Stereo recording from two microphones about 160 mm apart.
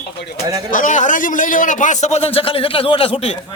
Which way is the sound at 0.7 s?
55° left (ahead or behind).